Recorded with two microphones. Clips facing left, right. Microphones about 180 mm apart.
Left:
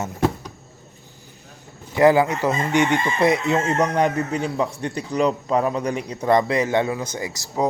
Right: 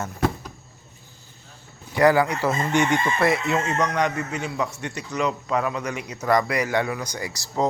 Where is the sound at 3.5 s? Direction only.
30° left (ahead or behind).